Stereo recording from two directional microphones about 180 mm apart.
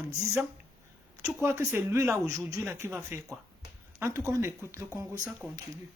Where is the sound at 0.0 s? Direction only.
15° right (ahead or behind).